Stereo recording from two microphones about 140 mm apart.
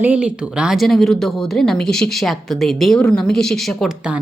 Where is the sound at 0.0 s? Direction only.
10° right (ahead or behind).